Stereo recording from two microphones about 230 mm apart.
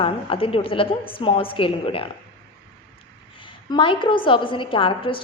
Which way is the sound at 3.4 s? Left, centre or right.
Left.